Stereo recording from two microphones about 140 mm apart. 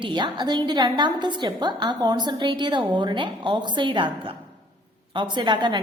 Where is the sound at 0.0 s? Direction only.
35° right (ahead or behind).